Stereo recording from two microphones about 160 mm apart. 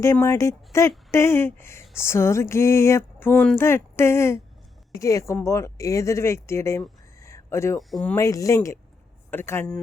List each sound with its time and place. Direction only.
0.0 s speech: 20° left (ahead or behind)
7.2 s a sound: 15° left (ahead or behind)
7.8 s speech: centre (ahead or behind)
8.1 s speech: 20° left (ahead or behind)